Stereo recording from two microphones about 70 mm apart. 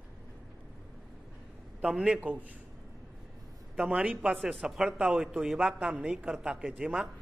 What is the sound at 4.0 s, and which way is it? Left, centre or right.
A man's voice, centre.